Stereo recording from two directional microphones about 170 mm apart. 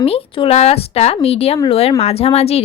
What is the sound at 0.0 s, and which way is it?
A woman's voice, 35° left (ahead or behind).